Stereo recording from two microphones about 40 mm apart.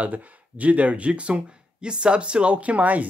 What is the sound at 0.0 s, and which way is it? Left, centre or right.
Speech, right.